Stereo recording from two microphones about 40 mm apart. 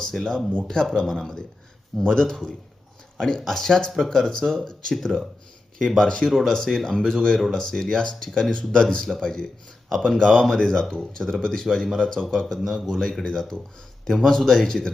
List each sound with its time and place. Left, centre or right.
0.0 s speech: centre
12.5 s a man's voice: centre
12.9 s speech: centre